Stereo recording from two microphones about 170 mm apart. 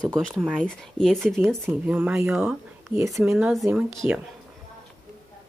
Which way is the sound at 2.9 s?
20° right (ahead or behind).